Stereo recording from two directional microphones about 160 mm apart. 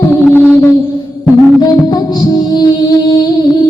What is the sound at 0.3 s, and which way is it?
Music, 10° left (ahead or behind).